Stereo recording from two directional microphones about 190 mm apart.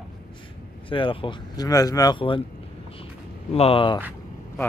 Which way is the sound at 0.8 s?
25° left (ahead or behind).